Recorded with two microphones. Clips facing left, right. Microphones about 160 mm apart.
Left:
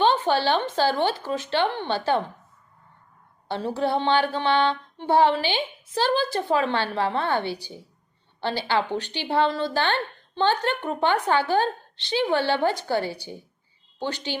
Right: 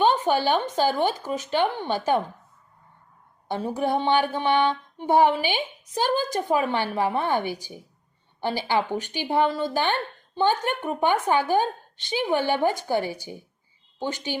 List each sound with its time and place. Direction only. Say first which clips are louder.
0.0 s a woman's voice: even; 10° right (ahead or behind)
3.5 s a woman's voice: even; 15° right (ahead or behind)